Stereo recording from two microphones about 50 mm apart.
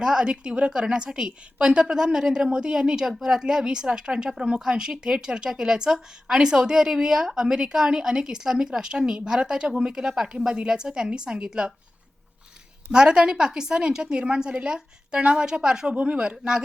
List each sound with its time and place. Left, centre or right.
0.0 s a woman's voice: centre
12.9 s a woman's voice: centre
15.9 s speech: right